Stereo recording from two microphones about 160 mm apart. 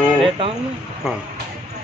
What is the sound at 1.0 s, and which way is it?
Speech, 5° right (ahead or behind).